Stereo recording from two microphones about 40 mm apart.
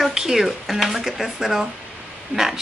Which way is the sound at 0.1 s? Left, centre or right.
Centre.